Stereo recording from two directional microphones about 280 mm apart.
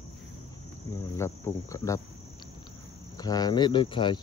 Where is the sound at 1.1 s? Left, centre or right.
Centre.